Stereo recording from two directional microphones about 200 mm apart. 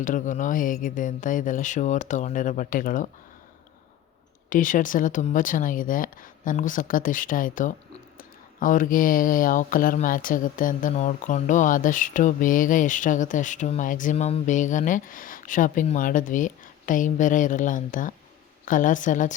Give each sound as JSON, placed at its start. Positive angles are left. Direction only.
{"t": 0.0, "sound": "speech", "side_deg": 40}
{"t": 4.4, "sound": "speech", "side_deg": 40}